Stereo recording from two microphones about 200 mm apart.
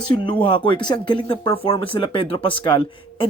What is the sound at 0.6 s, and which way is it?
Speech, 25° left (ahead or behind).